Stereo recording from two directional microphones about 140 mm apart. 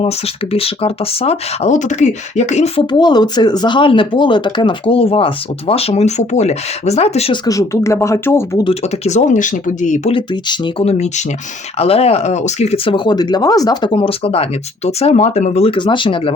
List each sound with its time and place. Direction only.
0.5 s speech: 45° left (ahead or behind)
2.9 s speech: 30° left (ahead or behind); by 7.3 s 50° left (ahead or behind)
7.4 s speech: 20° left (ahead or behind)
8.7 s speech: 55° left (ahead or behind)
10.1 s speech: 40° left (ahead or behind)